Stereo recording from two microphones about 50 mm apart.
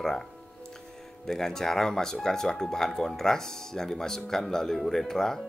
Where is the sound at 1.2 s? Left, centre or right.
Centre.